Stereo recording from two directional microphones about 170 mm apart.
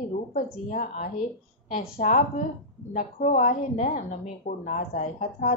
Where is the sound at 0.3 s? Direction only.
45° left (ahead or behind).